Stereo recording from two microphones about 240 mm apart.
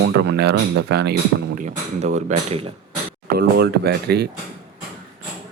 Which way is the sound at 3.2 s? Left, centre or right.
Right.